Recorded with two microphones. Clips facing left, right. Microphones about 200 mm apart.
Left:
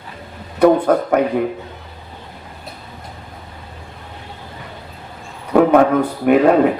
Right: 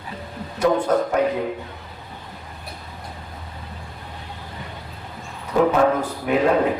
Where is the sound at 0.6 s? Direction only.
60° left (ahead or behind).